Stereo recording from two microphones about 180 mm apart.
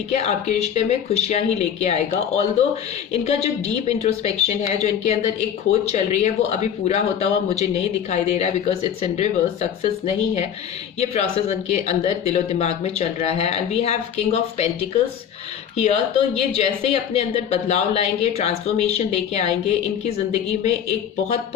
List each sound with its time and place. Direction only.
0.1 s speech: 35° left (ahead or behind)
15.8 s speech: 35° left (ahead or behind)